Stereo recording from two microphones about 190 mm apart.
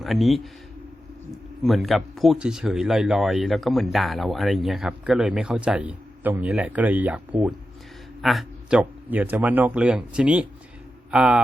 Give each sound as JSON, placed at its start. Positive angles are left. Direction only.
{"t": 0.0, "sound": "speech", "side_deg": 0}
{"t": 1.6, "sound": "speech", "side_deg": 0}